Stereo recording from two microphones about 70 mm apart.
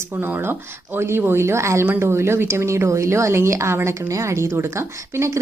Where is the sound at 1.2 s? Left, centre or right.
Right.